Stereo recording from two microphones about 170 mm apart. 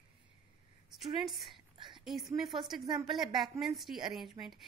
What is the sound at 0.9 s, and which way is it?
A woman's voice, centre (ahead or behind).